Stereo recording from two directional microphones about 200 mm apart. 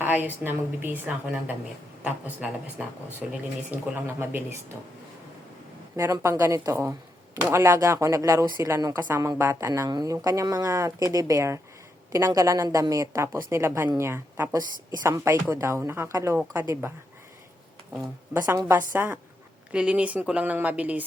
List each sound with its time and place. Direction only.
0.0 s a woman's voice: 10° right (ahead or behind)
6.0 s a woman's voice: 15° right (ahead or behind)
18.3 s a woman's voice: 15° right (ahead or behind)